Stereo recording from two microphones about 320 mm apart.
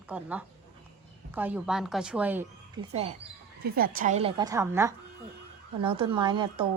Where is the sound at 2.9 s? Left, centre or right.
Centre.